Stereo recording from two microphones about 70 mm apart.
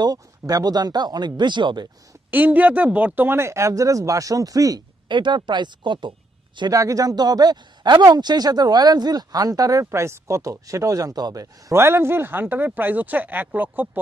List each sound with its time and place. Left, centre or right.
0.0 s speech: right
2.3 s speech: right
3.3 s speech: right
6.7 s speech: right
9.8 s speech: right
11.7 s speech: right